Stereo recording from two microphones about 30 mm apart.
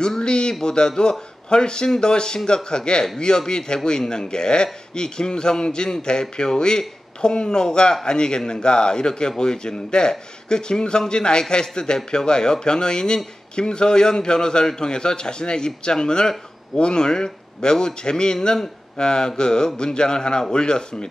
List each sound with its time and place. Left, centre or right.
0.2 s a man's voice: left